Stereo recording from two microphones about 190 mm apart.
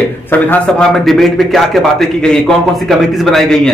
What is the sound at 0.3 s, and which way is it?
A man's voice, 5° left (ahead or behind).